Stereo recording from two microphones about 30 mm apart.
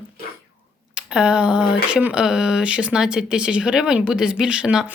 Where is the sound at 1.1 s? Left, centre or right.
Right.